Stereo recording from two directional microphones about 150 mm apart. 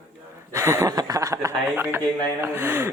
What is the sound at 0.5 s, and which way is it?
Speech, 20° right (ahead or behind).